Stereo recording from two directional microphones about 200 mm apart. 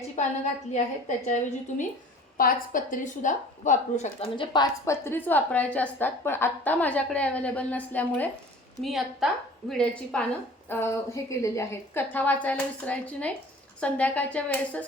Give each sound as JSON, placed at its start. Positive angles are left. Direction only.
{"t": 0.2, "sound": "a woman's voice", "side_deg": 35}
{"t": 2.4, "sound": "a woman's voice", "side_deg": 45}